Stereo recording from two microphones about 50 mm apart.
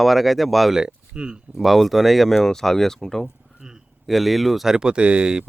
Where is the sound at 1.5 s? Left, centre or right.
Centre.